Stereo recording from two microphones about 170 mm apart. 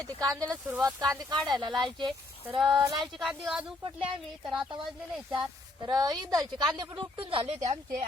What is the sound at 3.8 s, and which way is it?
Speech, 30° right (ahead or behind).